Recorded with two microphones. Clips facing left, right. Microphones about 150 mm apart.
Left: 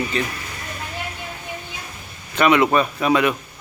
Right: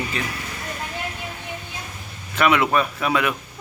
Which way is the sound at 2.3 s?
Centre (ahead or behind).